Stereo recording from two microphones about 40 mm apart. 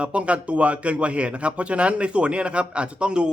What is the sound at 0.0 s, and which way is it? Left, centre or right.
A man's voice, right.